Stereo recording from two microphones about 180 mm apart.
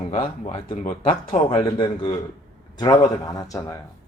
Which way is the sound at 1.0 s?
30° left (ahead or behind).